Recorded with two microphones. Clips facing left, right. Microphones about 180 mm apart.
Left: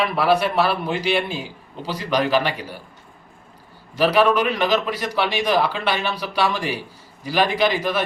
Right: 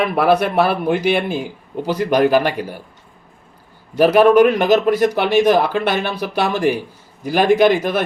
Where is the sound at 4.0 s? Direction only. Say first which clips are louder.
Right 7 dB; 50° right (ahead or behind).